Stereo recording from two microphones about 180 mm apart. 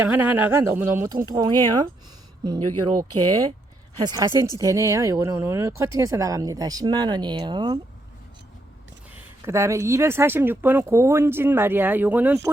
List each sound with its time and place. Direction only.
0.0 s speech: 10° right (ahead or behind)
9.5 s speech: 15° right (ahead or behind)